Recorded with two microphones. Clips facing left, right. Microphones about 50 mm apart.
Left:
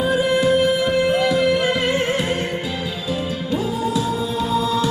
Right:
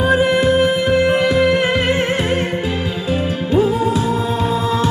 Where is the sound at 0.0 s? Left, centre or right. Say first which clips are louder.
Right 3 dB; right.